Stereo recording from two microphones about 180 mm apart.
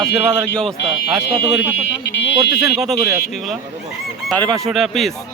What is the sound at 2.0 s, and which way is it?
Speech, 70° left (ahead or behind).